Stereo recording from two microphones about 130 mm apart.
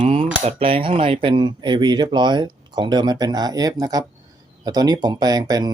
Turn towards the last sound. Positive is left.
turn(degrees=-30)  # may be behind; listen again after turning